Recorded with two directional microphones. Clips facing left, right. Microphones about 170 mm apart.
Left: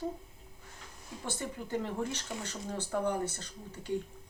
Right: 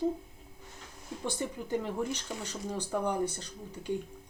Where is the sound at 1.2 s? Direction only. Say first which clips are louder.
Right 3 dB; 15° right (ahead or behind).